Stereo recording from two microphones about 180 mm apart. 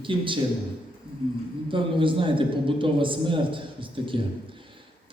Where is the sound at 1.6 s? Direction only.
30° right (ahead or behind).